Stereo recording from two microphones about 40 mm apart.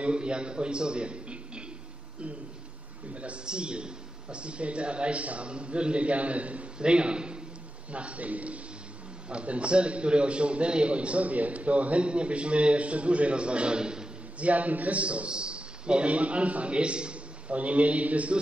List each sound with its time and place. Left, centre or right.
0.0 s a man's voice: right
3.4 s a man's voice: right
14.4 s a man's voice: right